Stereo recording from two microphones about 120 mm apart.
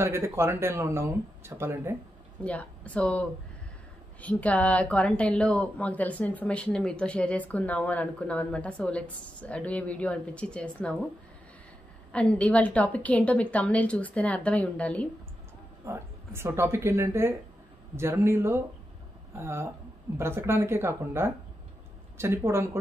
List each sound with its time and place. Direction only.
0.0 s speech: 20° right (ahead or behind)
2.4 s speech: 10° left (ahead or behind)
12.1 s speech: 10° left (ahead or behind)
15.8 s speech: 20° right (ahead or behind)